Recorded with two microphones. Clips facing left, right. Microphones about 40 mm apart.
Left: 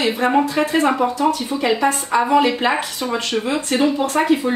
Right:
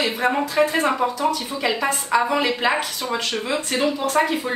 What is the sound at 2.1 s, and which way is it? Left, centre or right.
Speech, left.